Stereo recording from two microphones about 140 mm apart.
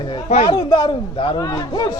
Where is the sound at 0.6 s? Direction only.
35° left (ahead or behind).